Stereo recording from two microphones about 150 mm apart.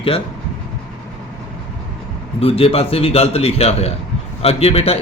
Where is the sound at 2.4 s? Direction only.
40° left (ahead or behind).